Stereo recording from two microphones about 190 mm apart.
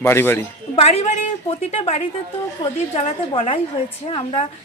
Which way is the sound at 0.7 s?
35° left (ahead or behind).